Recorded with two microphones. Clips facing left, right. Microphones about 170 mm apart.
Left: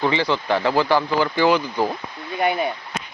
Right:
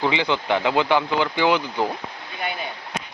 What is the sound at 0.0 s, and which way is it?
Speech, centre (ahead or behind).